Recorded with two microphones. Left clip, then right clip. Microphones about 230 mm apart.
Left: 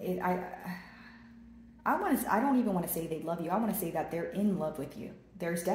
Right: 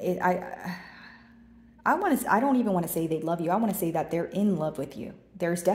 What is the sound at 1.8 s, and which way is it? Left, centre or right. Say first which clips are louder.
A woman's voice: right 5 dB; right.